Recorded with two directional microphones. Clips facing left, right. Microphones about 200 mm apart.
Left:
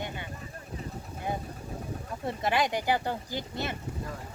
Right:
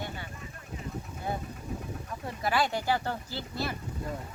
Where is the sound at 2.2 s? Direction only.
20° left (ahead or behind).